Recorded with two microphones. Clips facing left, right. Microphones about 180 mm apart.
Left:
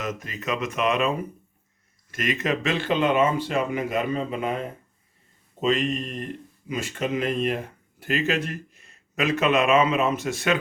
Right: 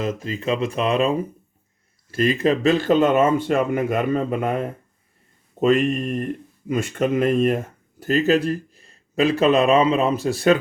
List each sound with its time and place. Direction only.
0.0 s speech: 30° right (ahead or behind)